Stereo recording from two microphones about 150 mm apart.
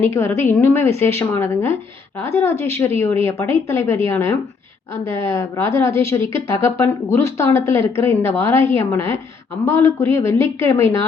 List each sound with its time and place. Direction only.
0.0 s a woman's voice: 15° left (ahead or behind)